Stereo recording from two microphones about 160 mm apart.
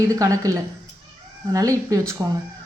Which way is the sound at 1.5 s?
20° right (ahead or behind).